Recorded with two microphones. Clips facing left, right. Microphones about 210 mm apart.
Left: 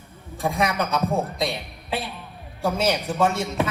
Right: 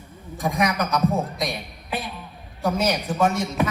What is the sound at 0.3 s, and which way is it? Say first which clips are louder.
A man's voice: right 1 dB; 25° left (ahead or behind).